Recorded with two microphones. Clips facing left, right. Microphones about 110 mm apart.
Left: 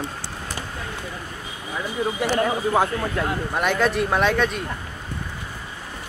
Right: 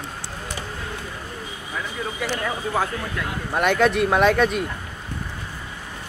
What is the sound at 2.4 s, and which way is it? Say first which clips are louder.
Speech: left 4 dB; 25° left (ahead or behind).